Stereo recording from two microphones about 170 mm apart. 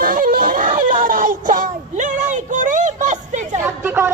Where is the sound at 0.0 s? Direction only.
55° right (ahead or behind).